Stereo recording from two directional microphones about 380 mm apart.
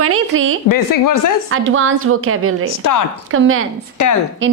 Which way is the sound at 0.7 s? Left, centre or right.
Left.